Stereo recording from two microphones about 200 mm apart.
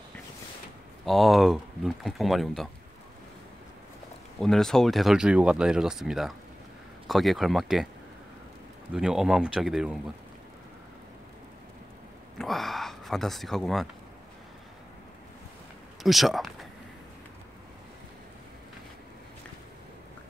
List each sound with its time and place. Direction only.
1.0 s speech: centre (ahead or behind)
4.4 s speech: centre (ahead or behind)
8.9 s speech: 5° right (ahead or behind)
12.4 s speech: centre (ahead or behind)
16.0 s speech: centre (ahead or behind)